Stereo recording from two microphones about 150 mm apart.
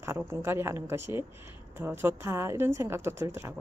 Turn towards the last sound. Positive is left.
turn(degrees=-15)  # may be behind; listen again after turning